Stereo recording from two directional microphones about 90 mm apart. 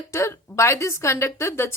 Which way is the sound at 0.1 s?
35° left (ahead or behind).